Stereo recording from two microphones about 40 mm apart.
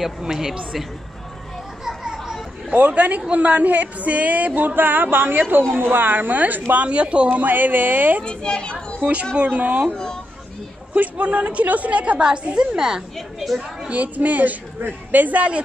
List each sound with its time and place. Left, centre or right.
0.2 s a woman's voice: centre
1.9 s children playing: centre
2.9 s a woman's voice: right
6.7 s a woman's voice: right
7.4 s a woman's voice: right
8.2 s a woman's voice: left
9.0 s a woman's voice: right
9.8 s speech: centre
11.0 s a woman's voice: right
12.3 s a woman's voice: right
13.8 s a woman's voice: right